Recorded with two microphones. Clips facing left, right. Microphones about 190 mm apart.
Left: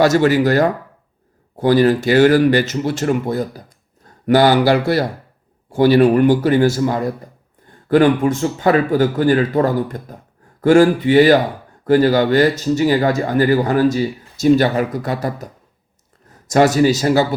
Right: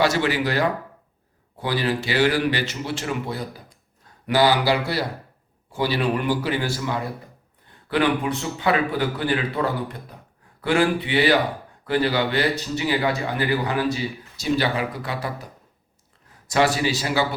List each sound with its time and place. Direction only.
0.0 s speech: 45° left (ahead or behind)
16.5 s speech: 45° left (ahead or behind)